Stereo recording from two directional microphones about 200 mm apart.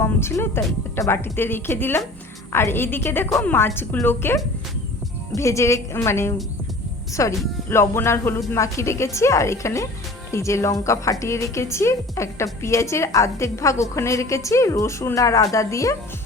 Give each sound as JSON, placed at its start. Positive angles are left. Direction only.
{"t": 0.0, "sound": "a woman's voice", "side_deg": 10}